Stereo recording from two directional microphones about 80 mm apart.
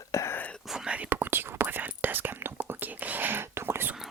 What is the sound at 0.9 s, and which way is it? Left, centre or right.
Whispering, right.